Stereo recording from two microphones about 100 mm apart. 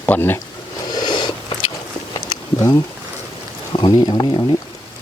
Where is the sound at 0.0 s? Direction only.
20° left (ahead or behind).